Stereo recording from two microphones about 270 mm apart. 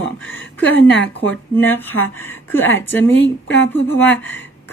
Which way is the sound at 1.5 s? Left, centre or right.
Centre.